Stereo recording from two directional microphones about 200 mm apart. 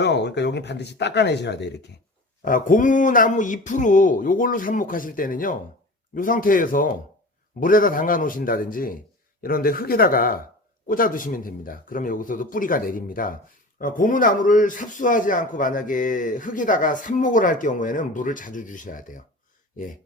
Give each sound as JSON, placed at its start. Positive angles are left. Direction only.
{"t": 0.0, "sound": "speech", "side_deg": 60}
{"t": 2.4, "sound": "a man's voice", "side_deg": 45}